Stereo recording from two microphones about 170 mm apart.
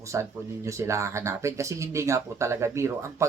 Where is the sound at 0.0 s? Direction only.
15° right (ahead or behind).